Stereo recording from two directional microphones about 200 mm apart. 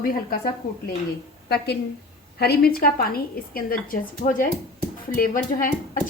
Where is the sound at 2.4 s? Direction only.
50° left (ahead or behind).